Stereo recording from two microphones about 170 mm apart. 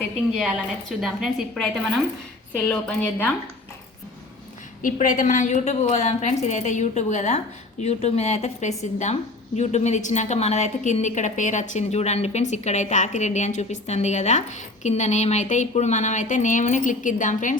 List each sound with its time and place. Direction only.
1.0 s a woman's voice: centre (ahead or behind)
4.8 s a woman's voice: 50° left (ahead or behind)